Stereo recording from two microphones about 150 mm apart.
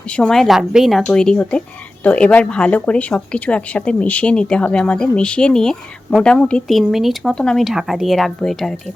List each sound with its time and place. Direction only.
0.1 s speech: 5° left (ahead or behind)